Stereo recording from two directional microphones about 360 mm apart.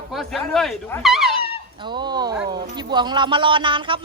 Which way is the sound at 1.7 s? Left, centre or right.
Centre.